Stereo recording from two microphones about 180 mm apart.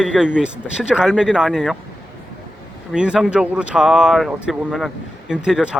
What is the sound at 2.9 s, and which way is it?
A man's voice, 5° right (ahead or behind).